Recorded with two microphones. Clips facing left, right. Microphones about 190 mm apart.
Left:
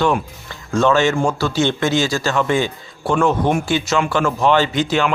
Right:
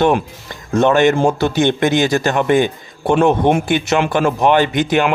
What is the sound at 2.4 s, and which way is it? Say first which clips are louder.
Speech: right 5 dB; 55° right (ahead or behind).